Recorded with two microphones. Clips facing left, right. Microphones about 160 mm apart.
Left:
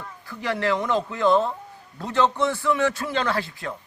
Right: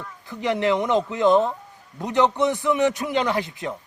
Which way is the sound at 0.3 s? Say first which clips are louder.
Right 3 dB; 20° right (ahead or behind).